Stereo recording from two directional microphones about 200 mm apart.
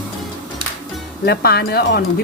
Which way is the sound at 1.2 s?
55° left (ahead or behind).